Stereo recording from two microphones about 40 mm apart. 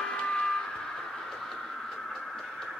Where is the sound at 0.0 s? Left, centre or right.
Centre.